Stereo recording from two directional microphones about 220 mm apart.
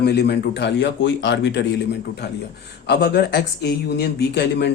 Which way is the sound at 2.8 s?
50° left (ahead or behind).